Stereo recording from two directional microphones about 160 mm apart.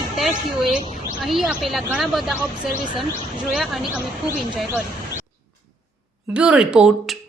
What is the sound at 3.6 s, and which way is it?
Speech, centre (ahead or behind).